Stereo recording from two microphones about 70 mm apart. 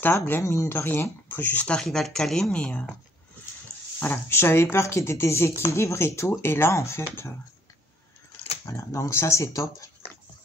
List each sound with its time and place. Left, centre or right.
0.0 s speech: left
0.4 s speech: left
0.7 s speech: left
1.8 s speech: centre
2.5 s speech: centre
4.0 s speech: left
8.6 s speech: left